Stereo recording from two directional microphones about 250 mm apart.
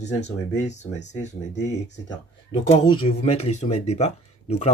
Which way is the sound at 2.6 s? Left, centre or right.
Left.